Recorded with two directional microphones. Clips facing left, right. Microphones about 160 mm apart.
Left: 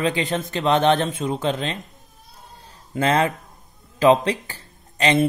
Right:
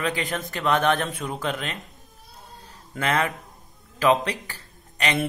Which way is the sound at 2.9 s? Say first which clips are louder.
Left 5 dB; 30° left (ahead or behind).